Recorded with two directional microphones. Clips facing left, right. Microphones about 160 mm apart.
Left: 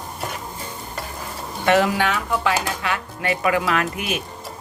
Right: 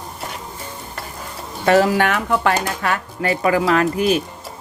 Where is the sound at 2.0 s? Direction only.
55° right (ahead or behind).